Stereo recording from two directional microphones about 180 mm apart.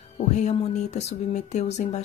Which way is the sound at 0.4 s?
40° left (ahead or behind).